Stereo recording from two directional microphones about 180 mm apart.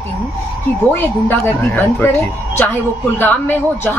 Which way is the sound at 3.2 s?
10° left (ahead or behind).